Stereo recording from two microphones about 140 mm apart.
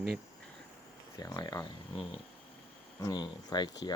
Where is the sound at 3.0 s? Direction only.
30° left (ahead or behind).